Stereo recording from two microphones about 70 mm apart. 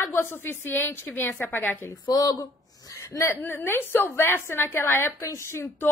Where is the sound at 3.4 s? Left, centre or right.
Left.